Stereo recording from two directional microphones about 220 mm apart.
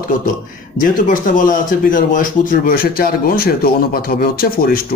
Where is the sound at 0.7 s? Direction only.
35° left (ahead or behind).